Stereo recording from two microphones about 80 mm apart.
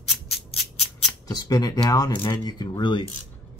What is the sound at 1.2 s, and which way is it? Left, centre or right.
Speech, left.